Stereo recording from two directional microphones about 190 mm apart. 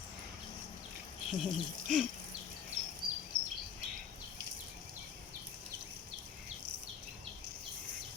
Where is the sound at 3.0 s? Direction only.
55° right (ahead or behind).